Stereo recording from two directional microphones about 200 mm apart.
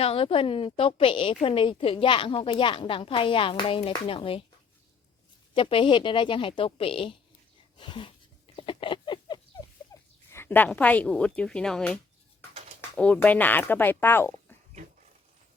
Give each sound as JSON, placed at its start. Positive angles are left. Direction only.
{"t": 0.0, "sound": "a woman's voice", "side_deg": 30}
{"t": 5.5, "sound": "a woman's voice", "side_deg": 25}
{"t": 8.5, "sound": "a sound", "side_deg": 25}
{"t": 10.2, "sound": "a woman's voice", "side_deg": 10}
{"t": 13.0, "sound": "speech", "side_deg": 5}